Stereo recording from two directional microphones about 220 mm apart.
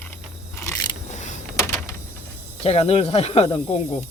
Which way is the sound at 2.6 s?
25° left (ahead or behind).